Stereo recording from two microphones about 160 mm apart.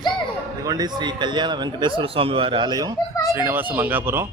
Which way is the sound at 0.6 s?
25° right (ahead or behind).